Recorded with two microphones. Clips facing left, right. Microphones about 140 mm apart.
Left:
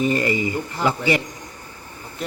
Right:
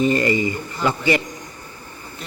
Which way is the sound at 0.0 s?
10° left (ahead or behind).